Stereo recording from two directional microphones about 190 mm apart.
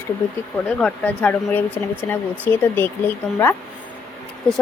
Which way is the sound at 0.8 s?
5° left (ahead or behind).